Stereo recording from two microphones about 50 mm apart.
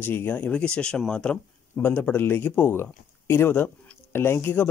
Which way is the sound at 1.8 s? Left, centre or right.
Left.